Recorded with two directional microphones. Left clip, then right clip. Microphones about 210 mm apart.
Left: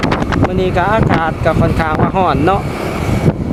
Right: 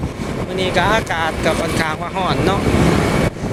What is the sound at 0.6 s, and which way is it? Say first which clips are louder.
Speech: even; 20° left (ahead or behind).